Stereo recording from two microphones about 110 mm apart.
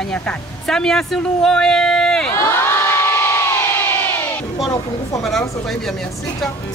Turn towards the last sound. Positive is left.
turn(degrees=5)  # may be behind; listen again after turning